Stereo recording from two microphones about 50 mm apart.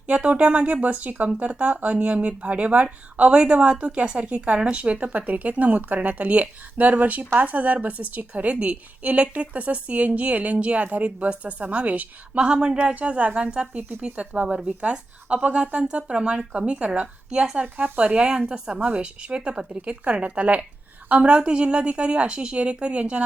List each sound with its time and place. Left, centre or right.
0.1 s speech: right
17.3 s speech: centre
17.7 s speech: right